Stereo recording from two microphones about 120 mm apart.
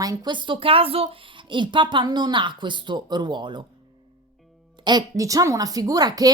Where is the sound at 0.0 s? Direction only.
35° right (ahead or behind).